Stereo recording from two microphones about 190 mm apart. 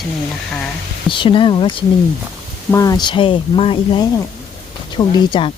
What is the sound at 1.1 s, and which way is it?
Speech, 25° left (ahead or behind).